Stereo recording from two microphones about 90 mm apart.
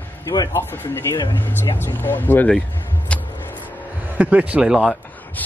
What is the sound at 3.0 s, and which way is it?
Music, 20° left (ahead or behind).